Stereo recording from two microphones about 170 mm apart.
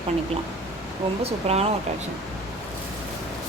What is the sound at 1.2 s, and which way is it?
Speech, 40° right (ahead or behind).